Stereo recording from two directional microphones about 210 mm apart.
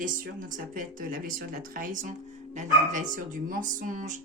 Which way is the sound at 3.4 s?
40° right (ahead or behind).